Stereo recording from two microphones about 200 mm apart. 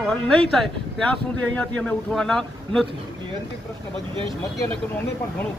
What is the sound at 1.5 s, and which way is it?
Speech, 5° left (ahead or behind).